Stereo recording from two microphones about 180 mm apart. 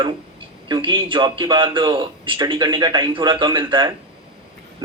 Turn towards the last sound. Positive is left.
turn(degrees=-25)  # may be behind; listen again after turning